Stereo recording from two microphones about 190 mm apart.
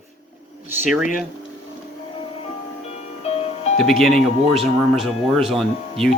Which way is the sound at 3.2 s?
30° left (ahead or behind).